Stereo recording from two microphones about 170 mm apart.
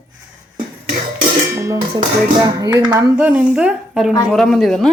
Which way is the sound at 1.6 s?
20° right (ahead or behind).